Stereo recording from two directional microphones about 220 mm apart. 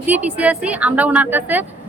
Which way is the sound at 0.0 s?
5° right (ahead or behind).